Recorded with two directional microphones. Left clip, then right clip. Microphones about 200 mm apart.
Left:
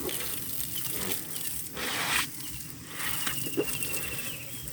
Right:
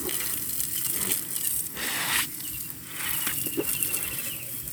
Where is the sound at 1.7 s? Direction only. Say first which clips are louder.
Right 1 dB; 15° right (ahead or behind).